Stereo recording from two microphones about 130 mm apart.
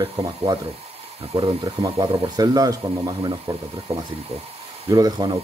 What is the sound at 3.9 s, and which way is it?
Speech, 50° right (ahead or behind).